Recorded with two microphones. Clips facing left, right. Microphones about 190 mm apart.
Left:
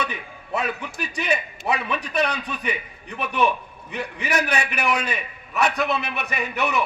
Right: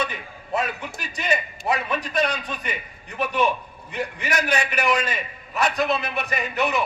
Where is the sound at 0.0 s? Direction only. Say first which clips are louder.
Right 1 dB; 60° left (ahead or behind).